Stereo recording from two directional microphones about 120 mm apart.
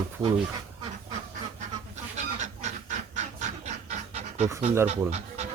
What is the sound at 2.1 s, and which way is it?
Goose, 75° right (ahead or behind).